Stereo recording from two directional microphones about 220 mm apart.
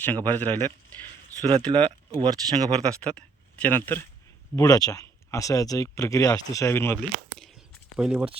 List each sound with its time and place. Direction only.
0.0 s speech: 10° left (ahead or behind)
1.4 s speech: 20° right (ahead or behind)
1.6 s speech: 5° left (ahead or behind)
2.2 s speech: 20° right (ahead or behind)
3.0 s speech: 5° left (ahead or behind)